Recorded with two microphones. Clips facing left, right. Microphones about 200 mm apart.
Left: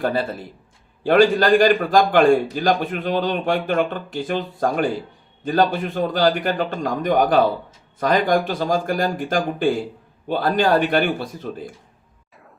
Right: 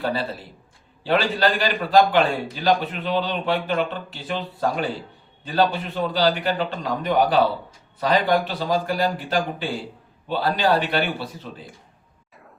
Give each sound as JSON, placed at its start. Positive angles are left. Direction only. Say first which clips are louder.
{"t": 0.0, "sound": "a man's voice", "louder": "left 4 dB", "side_deg": 50}